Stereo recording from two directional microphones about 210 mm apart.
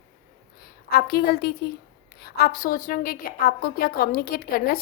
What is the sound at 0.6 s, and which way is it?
A woman's voice, 45° left (ahead or behind).